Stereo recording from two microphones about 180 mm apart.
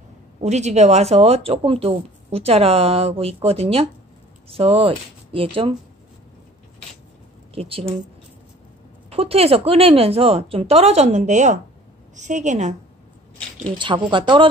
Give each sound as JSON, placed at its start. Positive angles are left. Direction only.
{"t": 0.4, "sound": "speech", "side_deg": -40}
{"t": 7.5, "sound": "speech", "side_deg": -30}
{"t": 9.1, "sound": "a woman's voice", "side_deg": -35}
{"t": 13.7, "sound": "speech", "side_deg": -25}